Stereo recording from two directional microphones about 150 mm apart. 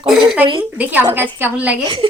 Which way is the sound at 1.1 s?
15° right (ahead or behind).